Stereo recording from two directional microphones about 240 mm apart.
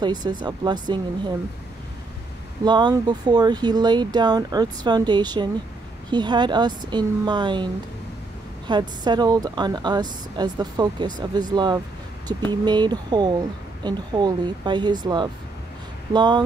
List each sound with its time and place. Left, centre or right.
0.0 s speech: centre
2.6 s speech: centre